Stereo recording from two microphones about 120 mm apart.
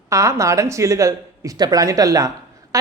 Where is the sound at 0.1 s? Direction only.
25° right (ahead or behind).